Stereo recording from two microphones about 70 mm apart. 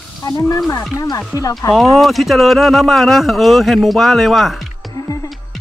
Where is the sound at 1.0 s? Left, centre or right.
Left.